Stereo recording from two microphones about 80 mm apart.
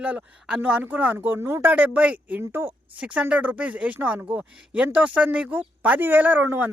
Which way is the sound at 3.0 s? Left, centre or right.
Centre.